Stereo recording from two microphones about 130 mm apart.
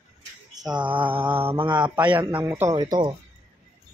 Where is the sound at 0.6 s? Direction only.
35° right (ahead or behind).